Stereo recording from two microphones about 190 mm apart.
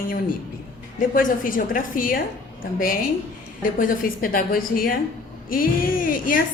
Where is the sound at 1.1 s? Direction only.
45° left (ahead or behind).